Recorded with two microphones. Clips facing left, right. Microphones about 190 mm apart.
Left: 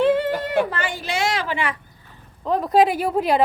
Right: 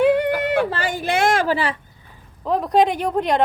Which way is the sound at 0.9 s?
55° right (ahead or behind).